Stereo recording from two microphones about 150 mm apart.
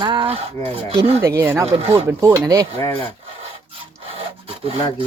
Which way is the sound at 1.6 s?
40° right (ahead or behind).